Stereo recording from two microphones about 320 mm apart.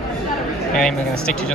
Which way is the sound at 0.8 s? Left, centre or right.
Centre.